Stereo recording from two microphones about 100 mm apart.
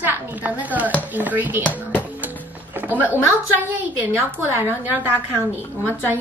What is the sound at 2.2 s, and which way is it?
Music, 20° right (ahead or behind).